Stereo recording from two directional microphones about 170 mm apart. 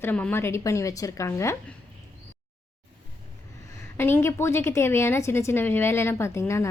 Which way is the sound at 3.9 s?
15° left (ahead or behind).